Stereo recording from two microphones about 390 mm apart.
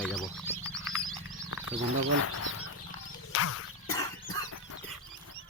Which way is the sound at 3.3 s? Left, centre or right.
Left.